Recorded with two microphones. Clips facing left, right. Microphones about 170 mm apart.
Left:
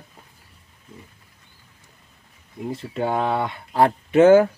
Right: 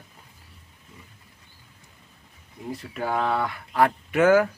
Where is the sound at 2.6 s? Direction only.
25° left (ahead or behind).